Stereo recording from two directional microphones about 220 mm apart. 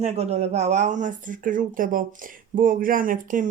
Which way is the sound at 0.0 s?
30° right (ahead or behind).